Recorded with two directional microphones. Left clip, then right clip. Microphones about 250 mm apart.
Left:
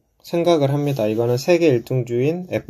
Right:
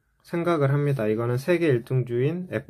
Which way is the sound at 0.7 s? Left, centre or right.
Centre.